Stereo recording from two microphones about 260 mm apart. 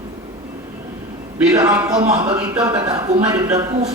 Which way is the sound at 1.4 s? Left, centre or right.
Centre.